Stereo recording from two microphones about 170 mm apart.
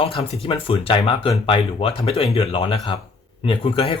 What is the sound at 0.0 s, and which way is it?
Speech, 35° left (ahead or behind).